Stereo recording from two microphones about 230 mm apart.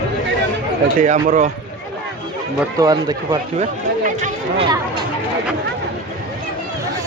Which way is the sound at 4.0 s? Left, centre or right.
Right.